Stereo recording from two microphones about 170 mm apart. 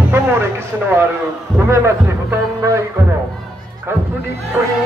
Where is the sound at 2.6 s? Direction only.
20° right (ahead or behind).